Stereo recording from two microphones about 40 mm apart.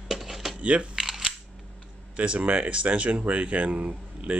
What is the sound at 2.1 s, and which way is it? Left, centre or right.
Speech, right.